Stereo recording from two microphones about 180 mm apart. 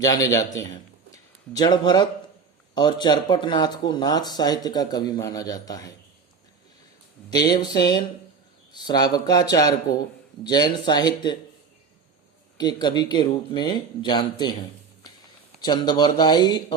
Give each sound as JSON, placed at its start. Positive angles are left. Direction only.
{"t": 0.0, "sound": "a man's voice", "side_deg": 20}
{"t": 7.3, "sound": "speech", "side_deg": 20}
{"t": 12.5, "sound": "speech", "side_deg": 25}
{"t": 15.6, "sound": "speech", "side_deg": 25}